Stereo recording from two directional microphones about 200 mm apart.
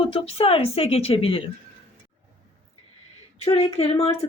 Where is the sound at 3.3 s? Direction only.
30° left (ahead or behind).